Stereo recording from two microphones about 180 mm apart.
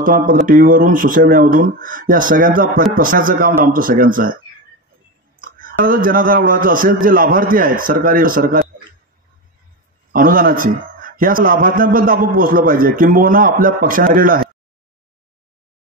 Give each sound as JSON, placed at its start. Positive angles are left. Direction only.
{"t": 0.0, "sound": "a man's voice", "side_deg": -50}
{"t": 5.4, "sound": "a sound", "side_deg": -50}
{"t": 5.9, "sound": "a man's voice", "side_deg": -50}
{"t": 10.1, "sound": "a man's voice", "side_deg": -50}